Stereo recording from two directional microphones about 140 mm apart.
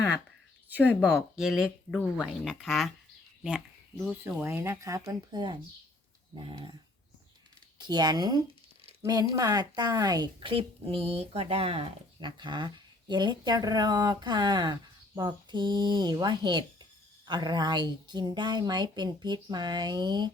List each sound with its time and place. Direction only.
0.7 s speech: 10° right (ahead or behind)
4.4 s speech: 15° right (ahead or behind); by 6.7 s 30° right (ahead or behind)
7.8 s speech: 30° right (ahead or behind)